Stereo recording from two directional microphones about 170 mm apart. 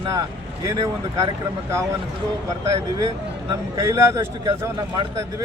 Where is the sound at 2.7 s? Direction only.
20° right (ahead or behind).